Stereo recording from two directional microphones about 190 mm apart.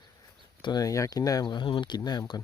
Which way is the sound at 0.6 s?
20° left (ahead or behind).